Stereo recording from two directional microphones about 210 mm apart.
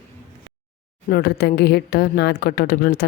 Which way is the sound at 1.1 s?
50° left (ahead or behind).